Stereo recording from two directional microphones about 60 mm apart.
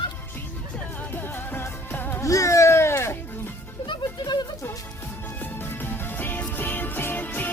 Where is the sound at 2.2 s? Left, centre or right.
Left.